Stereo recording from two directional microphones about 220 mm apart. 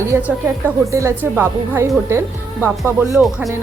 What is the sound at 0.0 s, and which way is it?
A woman's voice, 10° right (ahead or behind).